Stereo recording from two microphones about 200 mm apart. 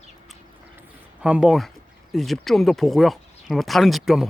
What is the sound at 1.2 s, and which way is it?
Speech, 5° right (ahead or behind).